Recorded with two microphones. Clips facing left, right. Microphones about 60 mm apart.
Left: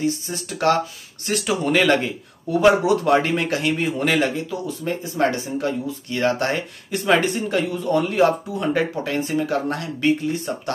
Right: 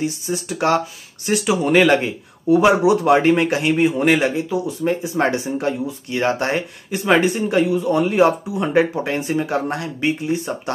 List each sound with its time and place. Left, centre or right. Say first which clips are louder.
0.0 s a man's voice: right 1 dB; centre